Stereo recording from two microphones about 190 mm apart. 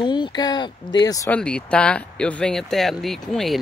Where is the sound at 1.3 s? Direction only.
5° left (ahead or behind).